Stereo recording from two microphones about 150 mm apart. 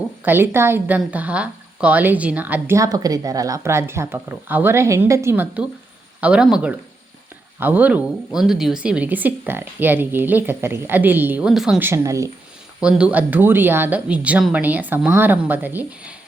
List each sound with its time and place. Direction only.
0.3 s a woman's voice: 15° right (ahead or behind)
11.9 s speech: 20° right (ahead or behind)
12.8 s a woman's voice: 10° right (ahead or behind)